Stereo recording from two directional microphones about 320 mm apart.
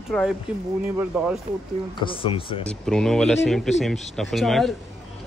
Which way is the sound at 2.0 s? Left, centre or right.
Centre.